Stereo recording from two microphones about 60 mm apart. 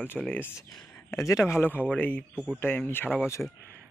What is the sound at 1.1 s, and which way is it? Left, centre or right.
Speech, left.